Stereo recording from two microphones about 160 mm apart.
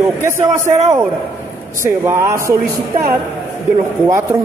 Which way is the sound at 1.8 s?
15° right (ahead or behind).